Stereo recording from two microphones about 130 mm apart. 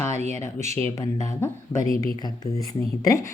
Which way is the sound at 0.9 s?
25° left (ahead or behind).